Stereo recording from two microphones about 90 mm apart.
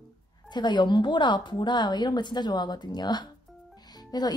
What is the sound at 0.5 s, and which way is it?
A woman's voice, 55° left (ahead or behind).